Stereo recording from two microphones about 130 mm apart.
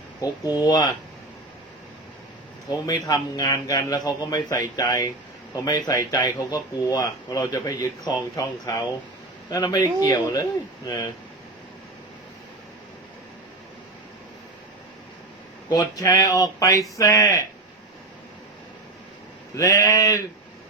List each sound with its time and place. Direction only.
0.6 s speech: 30° left (ahead or behind)
2.6 s speech: 30° left (ahead or behind)
15.7 s speech: 30° left (ahead or behind)
19.5 s speech: 25° left (ahead or behind)